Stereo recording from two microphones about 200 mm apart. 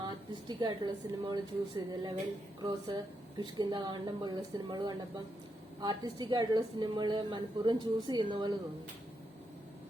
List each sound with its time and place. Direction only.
0.0 s a woman's voice: 20° right (ahead or behind)